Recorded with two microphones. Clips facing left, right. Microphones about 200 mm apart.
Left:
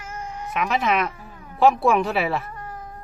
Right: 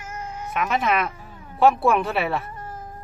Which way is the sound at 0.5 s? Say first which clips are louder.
Even; centre (ahead or behind).